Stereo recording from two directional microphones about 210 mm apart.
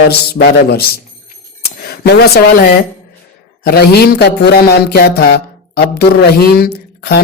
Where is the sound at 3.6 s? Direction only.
50° left (ahead or behind).